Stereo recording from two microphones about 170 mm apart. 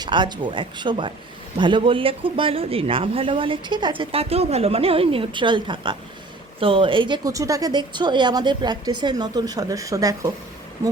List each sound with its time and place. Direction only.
0.0 s a woman's voice: 25° right (ahead or behind)